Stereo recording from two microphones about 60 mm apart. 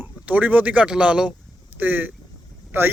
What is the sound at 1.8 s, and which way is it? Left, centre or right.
Speech, right.